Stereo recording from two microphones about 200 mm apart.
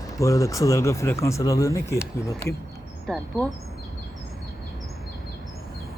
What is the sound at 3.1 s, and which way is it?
Speech, 5° left (ahead or behind).